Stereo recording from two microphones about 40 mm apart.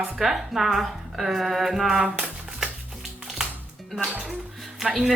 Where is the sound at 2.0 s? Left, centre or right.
Centre.